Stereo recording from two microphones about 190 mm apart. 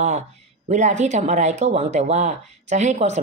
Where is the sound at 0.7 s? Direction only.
40° right (ahead or behind).